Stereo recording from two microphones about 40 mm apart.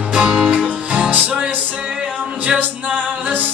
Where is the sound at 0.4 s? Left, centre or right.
Centre.